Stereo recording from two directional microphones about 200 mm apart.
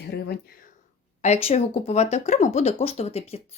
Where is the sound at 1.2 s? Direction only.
30° left (ahead or behind).